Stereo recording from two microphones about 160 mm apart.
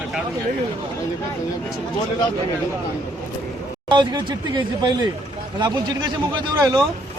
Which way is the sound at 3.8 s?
30° right (ahead or behind).